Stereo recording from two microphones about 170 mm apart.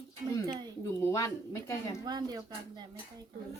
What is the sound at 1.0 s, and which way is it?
Speech, 15° left (ahead or behind).